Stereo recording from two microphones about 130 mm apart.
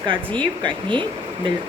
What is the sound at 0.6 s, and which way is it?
Speech, 40° right (ahead or behind).